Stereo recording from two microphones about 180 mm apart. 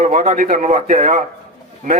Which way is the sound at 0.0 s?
40° right (ahead or behind).